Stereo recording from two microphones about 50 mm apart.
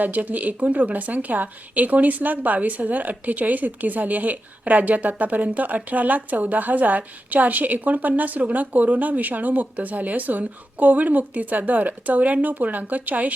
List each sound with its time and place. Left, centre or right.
0.0 s speech: right